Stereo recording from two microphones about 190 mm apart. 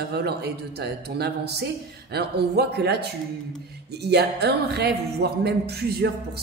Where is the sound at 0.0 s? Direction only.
60° right (ahead or behind).